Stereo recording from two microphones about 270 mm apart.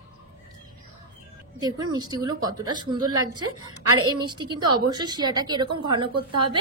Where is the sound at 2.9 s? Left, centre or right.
Right.